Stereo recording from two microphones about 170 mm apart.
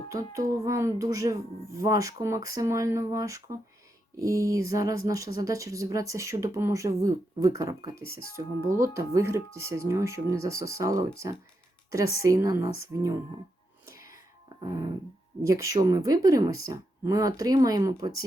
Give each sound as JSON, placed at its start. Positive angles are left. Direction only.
{"t": 0.1, "sound": "speech", "side_deg": -20}
{"t": 8.0, "sound": "speech", "side_deg": 60}
{"t": 8.4, "sound": "speech", "side_deg": -20}
{"t": 12.1, "sound": "speech", "side_deg": -15}
{"t": 14.6, "sound": "dog", "side_deg": -20}
{"t": 15.4, "sound": "speech", "side_deg": -20}